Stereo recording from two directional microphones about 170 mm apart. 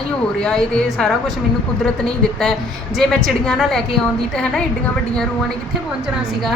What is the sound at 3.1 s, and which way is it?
A man's voice, centre (ahead or behind).